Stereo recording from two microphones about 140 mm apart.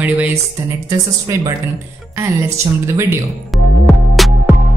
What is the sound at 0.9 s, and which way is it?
A woman's voice, 25° right (ahead or behind).